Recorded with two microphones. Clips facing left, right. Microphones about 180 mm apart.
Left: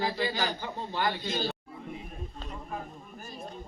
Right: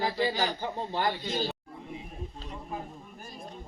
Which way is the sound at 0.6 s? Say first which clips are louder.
Right 2 dB; 30° right (ahead or behind).